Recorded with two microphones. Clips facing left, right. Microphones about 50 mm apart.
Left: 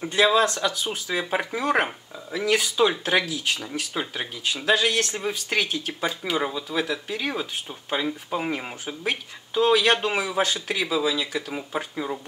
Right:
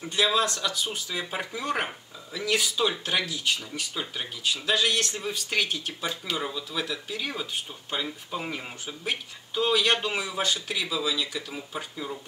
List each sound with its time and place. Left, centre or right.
0.0 s speech: centre
3.2 s speech: centre
11.7 s speech: left